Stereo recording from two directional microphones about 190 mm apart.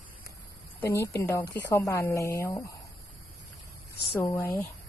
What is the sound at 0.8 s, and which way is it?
Speech, 15° left (ahead or behind).